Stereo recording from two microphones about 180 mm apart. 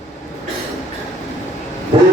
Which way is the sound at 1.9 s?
30° right (ahead or behind).